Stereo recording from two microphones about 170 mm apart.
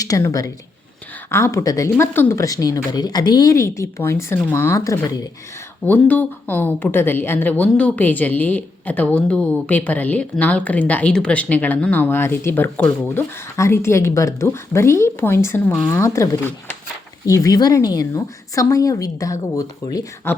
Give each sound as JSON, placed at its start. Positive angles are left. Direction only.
{"t": 0.0, "sound": "speech", "side_deg": 20}
{"t": 5.8, "sound": "speech", "side_deg": 10}
{"t": 15.7, "sound": "speech", "side_deg": 0}
{"t": 16.0, "sound": "speech", "side_deg": 20}